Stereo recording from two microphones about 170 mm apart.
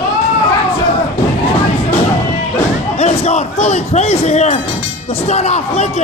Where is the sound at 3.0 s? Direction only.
40° left (ahead or behind).